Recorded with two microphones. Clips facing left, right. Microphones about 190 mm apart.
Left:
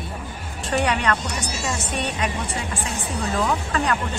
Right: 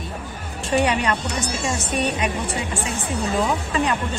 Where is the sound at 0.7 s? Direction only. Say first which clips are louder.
Right 2 dB; 10° right (ahead or behind).